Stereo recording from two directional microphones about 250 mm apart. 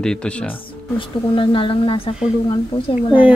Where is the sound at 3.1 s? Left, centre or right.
Centre.